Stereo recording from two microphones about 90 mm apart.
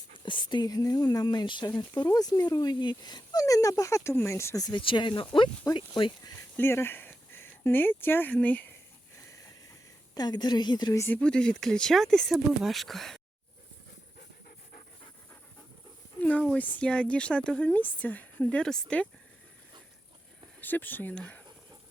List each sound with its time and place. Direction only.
0.3 s speech: 60° left (ahead or behind)
3.4 s speech: 40° left (ahead or behind)
4.8 s speech: 70° left (ahead or behind)
6.6 s speech: 25° left (ahead or behind)
10.2 s speech: 50° left (ahead or behind)
11.1 s speech: 10° left (ahead or behind)
16.2 s speech: 15° left (ahead or behind)
20.6 s speech: 20° left (ahead or behind)